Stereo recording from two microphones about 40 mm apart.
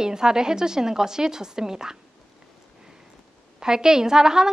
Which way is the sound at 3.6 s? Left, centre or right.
Centre.